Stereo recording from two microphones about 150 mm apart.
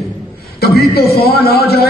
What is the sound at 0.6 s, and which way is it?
A man's voice, 90° left.